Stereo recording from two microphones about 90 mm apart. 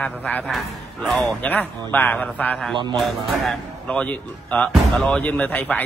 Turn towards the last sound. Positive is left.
turn(degrees=15)  # may be behind; listen again after turning